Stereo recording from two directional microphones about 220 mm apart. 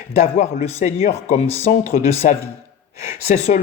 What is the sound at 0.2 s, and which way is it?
Speech, 30° left (ahead or behind).